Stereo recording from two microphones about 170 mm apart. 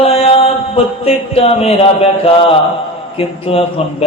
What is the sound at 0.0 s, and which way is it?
Mantra, 35° left (ahead or behind).